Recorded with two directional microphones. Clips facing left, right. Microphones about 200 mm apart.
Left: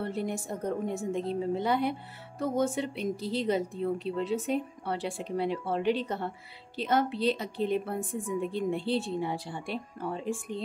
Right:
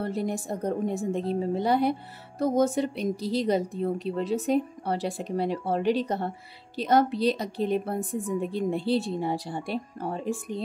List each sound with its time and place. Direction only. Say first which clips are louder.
0.0 s a woman's voice: right 3 dB; 40° right (ahead or behind)